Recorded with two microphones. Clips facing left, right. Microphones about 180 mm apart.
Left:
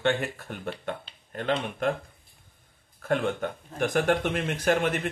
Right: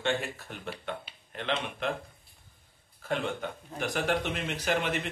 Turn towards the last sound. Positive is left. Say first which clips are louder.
# left 5 dB
turn(degrees=50)  # may be behind; listen again after turning